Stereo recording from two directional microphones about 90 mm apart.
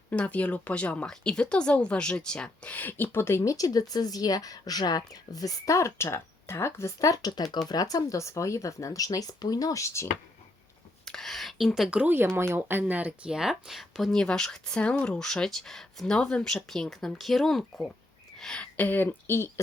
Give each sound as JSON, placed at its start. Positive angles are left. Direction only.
{"t": 0.1, "sound": "speech", "side_deg": 15}
{"t": 11.0, "sound": "speech", "side_deg": 5}
{"t": 11.9, "sound": "speech", "side_deg": -15}